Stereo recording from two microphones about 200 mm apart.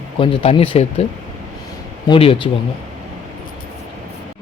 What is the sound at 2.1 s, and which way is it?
Speech, 25° left (ahead or behind).